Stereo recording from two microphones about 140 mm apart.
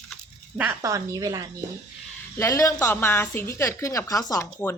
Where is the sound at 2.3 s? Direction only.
20° left (ahead or behind).